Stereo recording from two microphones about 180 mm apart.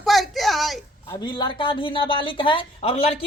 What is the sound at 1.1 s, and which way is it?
A woman's voice, 25° left (ahead or behind).